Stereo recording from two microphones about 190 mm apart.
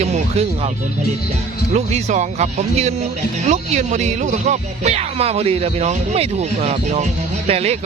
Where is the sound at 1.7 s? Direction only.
35° right (ahead or behind).